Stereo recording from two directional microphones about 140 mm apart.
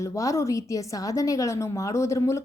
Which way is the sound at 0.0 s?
20° left (ahead or behind).